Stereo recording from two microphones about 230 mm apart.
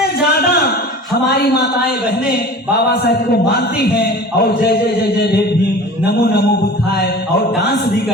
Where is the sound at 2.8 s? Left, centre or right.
Left.